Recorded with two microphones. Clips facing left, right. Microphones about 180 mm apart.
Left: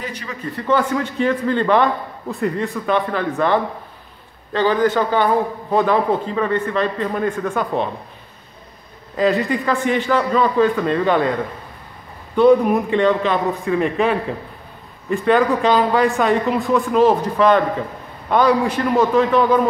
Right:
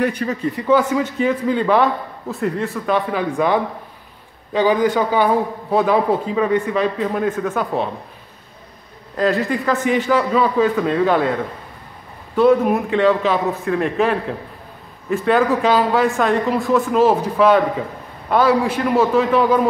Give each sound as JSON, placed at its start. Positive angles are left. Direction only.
{"t": 0.0, "sound": "speech", "side_deg": -55}
{"t": 0.5, "sound": "a man's voice", "side_deg": -10}
{"t": 9.1, "sound": "speech", "side_deg": 0}
{"t": 12.4, "sound": "speech", "side_deg": 0}